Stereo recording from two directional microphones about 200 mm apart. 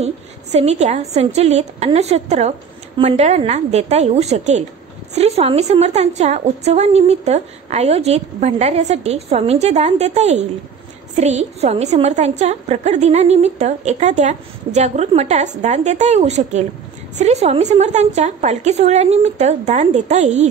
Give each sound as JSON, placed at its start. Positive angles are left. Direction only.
{"t": 0.0, "sound": "a woman's voice", "side_deg": -30}